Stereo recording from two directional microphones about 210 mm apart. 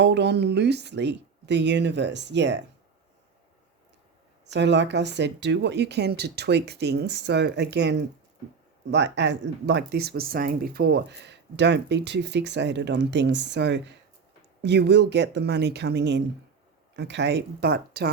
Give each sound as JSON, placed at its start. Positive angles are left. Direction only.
{"t": 0.0, "sound": "speech", "side_deg": -55}
{"t": 4.4, "sound": "speech", "side_deg": -55}